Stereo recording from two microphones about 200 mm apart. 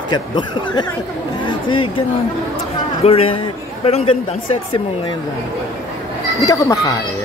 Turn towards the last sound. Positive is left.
turn(degrees=15)  # may be behind; listen again after turning